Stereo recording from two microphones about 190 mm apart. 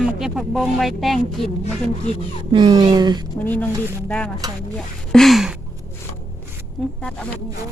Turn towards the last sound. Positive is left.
turn(degrees=5)  # may be behind; listen again after turning